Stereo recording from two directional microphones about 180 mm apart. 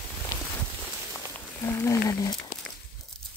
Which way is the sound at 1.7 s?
15° left (ahead or behind).